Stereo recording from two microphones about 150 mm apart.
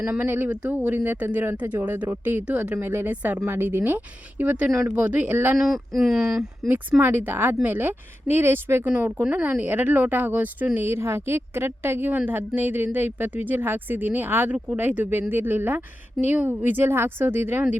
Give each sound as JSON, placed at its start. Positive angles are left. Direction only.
{"t": 0.0, "sound": "a woman's voice", "side_deg": -10}